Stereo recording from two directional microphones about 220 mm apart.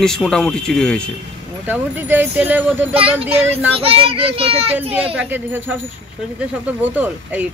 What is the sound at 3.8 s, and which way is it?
Speech, 25° right (ahead or behind).